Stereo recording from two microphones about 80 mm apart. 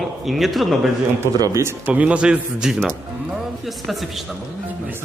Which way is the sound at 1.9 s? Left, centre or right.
Centre.